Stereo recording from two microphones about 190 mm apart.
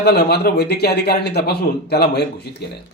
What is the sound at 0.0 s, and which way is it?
A man's voice, 55° left (ahead or behind).